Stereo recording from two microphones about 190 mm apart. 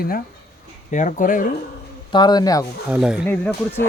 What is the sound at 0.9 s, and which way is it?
Speech, 40° left (ahead or behind).